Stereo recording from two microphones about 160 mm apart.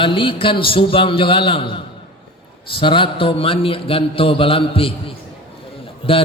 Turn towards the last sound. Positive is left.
turn(degrees=35)  # may be behind; listen again after turning